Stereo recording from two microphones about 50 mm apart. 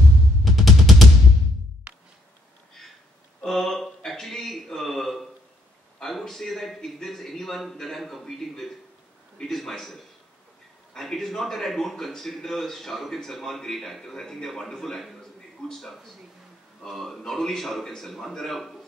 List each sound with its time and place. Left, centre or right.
0.5 s music: centre
3.4 s a sound: centre
9.4 s a man's voice: centre